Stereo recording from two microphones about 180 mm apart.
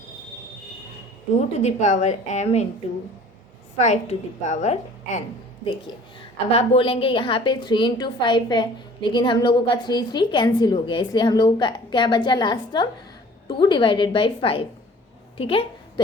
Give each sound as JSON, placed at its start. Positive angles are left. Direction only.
{"t": 1.4, "sound": "a woman's voice", "side_deg": 40}
{"t": 3.8, "sound": "a woman's voice", "side_deg": 40}
{"t": 6.5, "sound": "a woman's voice", "side_deg": 30}